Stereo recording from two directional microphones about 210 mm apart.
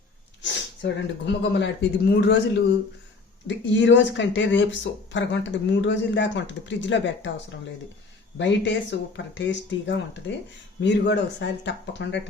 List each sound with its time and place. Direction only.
0.8 s speech: 60° left (ahead or behind)
8.4 s speech: 60° left (ahead or behind)